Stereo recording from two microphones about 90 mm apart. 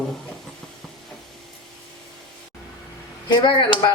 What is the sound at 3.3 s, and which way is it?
Speech, 55° left (ahead or behind).